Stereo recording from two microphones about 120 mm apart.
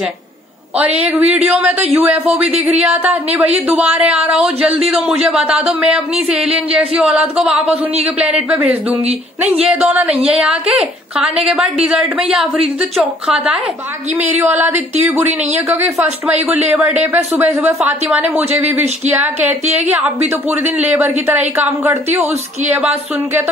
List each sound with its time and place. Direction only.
0.7 s speech: 10° right (ahead or behind)
9.7 s a woman's voice: 10° right (ahead or behind)
15.1 s speech: 15° right (ahead or behind)
20.2 s speech: 15° right (ahead or behind)